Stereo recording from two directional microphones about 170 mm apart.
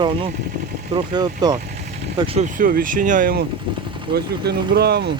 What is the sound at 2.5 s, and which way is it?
Speech, 55° right (ahead or behind).